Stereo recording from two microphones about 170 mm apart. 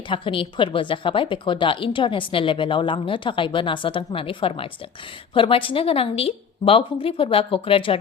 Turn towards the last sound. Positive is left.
turn(degrees=30)  # may be behind; listen again after turning